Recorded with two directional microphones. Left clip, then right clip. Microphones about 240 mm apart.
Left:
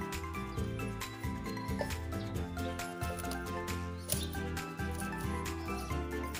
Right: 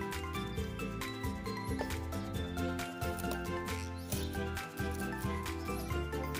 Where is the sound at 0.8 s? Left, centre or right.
Centre.